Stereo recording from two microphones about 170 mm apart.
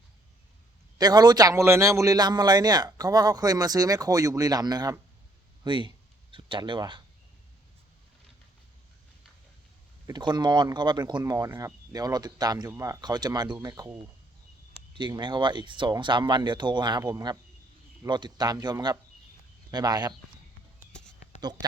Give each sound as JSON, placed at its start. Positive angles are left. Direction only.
{"t": 0.9, "sound": "a man's voice", "side_deg": -25}
{"t": 10.1, "sound": "a man's voice", "side_deg": -25}
{"t": 14.9, "sound": "a man's voice", "side_deg": -25}